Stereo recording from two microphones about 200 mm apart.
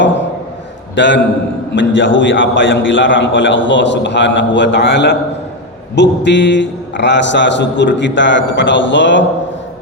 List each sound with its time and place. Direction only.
0.9 s a man's voice: 65° left (ahead or behind)